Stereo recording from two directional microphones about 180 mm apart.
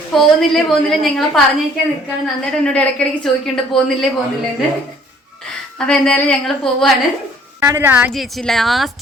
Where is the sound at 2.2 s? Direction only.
5° left (ahead or behind).